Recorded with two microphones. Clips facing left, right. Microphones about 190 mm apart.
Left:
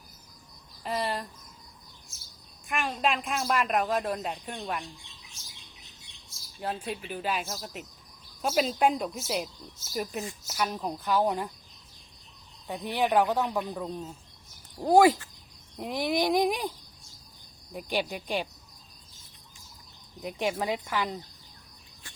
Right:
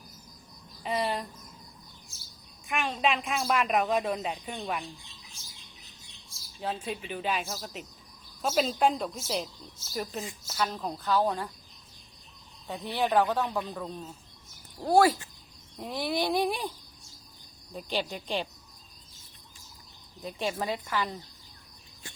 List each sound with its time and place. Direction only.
0.9 s speech: centre (ahead or behind)
2.6 s speech: centre (ahead or behind)
6.6 s speech: 5° left (ahead or behind)
12.6 s speech: 15° left (ahead or behind)
17.7 s speech: 15° left (ahead or behind)
20.2 s speech: 15° left (ahead or behind)